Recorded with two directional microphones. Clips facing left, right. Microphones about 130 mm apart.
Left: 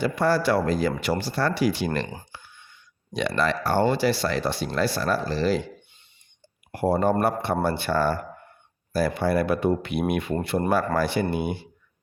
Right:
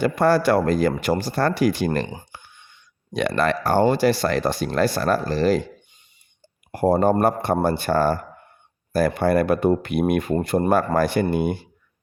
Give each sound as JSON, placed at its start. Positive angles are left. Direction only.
{"t": 0.0, "sound": "speech", "side_deg": -50}
{"t": 3.1, "sound": "speech", "side_deg": -55}
{"t": 6.7, "sound": "speech", "side_deg": -40}